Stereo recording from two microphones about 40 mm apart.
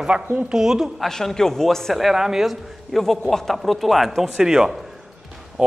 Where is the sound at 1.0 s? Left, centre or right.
Centre.